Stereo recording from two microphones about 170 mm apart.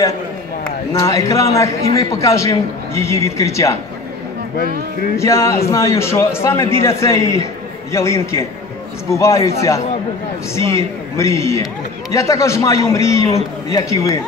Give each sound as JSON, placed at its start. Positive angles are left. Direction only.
{"t": 0.9, "sound": "a man's voice", "side_deg": 20}
{"t": 5.1, "sound": "a man's voice", "side_deg": 15}